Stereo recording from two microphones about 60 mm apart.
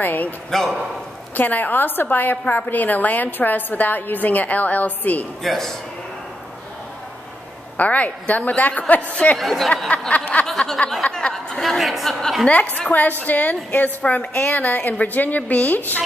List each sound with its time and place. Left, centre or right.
0.0 s a man's voice: left
0.5 s speech: centre
1.3 s a woman's voice: left
5.4 s speech: centre
7.7 s a woman's voice: left
9.4 s speech: centre
9.8 s a woman's voice: left; by 12.4 s centre
12.7 s a woman's voice: left